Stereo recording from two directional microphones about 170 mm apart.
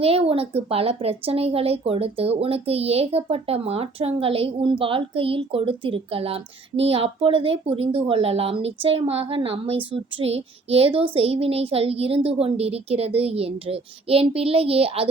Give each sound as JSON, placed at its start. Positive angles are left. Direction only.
{"t": 0.0, "sound": "speech", "side_deg": -35}